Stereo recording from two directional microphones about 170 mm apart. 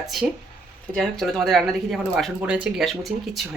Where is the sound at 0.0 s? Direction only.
Centre (ahead or behind).